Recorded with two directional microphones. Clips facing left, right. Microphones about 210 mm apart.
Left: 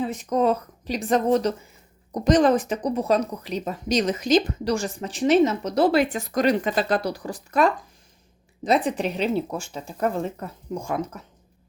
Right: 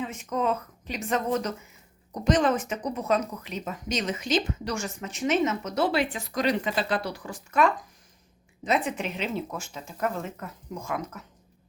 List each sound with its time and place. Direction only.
0.0 s speech: 35° left (ahead or behind)